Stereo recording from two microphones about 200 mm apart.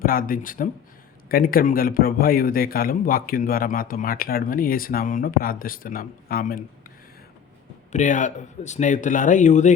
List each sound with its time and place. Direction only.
0.0 s a man's voice: 45° left (ahead or behind)
7.9 s speech: 40° left (ahead or behind)